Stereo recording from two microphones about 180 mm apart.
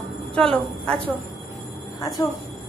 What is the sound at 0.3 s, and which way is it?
Speech, 5° left (ahead or behind).